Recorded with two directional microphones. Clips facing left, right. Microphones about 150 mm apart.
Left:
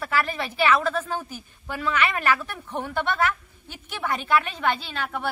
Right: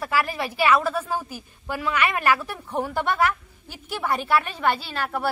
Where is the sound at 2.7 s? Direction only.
10° right (ahead or behind).